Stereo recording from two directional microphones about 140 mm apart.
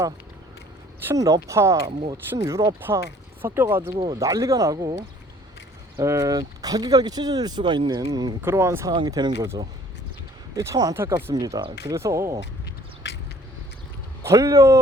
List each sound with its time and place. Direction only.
1.0 s speech: 25° right (ahead or behind)
3.9 s speech: 35° right (ahead or behind)
4.2 s speech: 25° right (ahead or behind)
6.0 s speech: 20° right (ahead or behind)
8.4 s speech: 15° right (ahead or behind)
8.9 s speech: 30° right (ahead or behind)
14.3 s speech: 20° right (ahead or behind)